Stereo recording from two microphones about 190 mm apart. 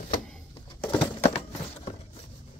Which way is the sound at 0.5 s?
15° left (ahead or behind).